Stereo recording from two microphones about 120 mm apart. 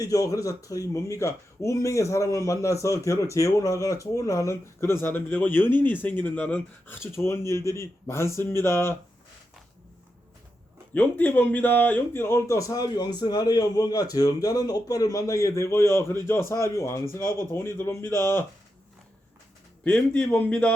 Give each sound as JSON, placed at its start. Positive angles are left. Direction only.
{"t": 0.0, "sound": "a man's voice", "side_deg": 30}
{"t": 10.9, "sound": "a man's voice", "side_deg": 10}
{"t": 19.8, "sound": "speech", "side_deg": 10}